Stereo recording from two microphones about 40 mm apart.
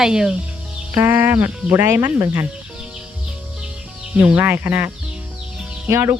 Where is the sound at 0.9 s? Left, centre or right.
Right.